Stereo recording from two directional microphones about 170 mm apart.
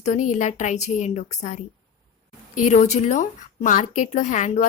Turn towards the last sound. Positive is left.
turn(degrees=45)  # may be behind; listen again after turning